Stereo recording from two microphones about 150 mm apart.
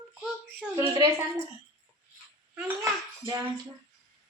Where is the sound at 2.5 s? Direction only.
10° right (ahead or behind).